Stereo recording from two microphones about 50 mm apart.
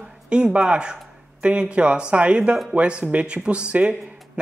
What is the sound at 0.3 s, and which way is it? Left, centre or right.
A man's voice, right.